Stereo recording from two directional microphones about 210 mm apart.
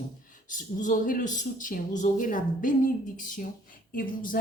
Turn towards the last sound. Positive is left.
turn(degrees=40)  # may be behind; listen again after turning